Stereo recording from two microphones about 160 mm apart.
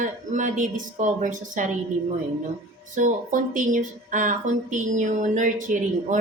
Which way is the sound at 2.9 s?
55° right (ahead or behind).